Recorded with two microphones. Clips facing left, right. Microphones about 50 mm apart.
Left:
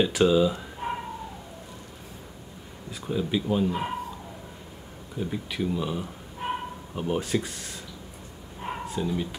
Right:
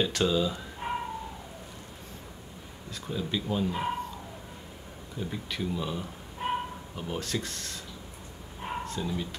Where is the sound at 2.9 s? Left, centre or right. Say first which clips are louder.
Left 5 dB; centre.